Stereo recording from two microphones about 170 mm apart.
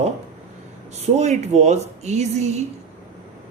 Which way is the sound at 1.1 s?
40° right (ahead or behind).